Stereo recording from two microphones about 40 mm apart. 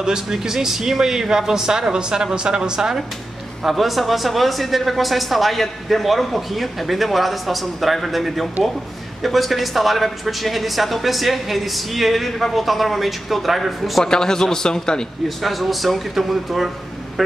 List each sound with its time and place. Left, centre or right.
0.0 s speech: centre
3.6 s speech: centre
14.0 s a man's voice: centre
15.2 s speech: centre